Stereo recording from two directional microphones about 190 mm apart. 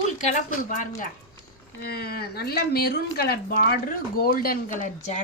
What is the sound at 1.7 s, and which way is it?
Speech, 55° left (ahead or behind).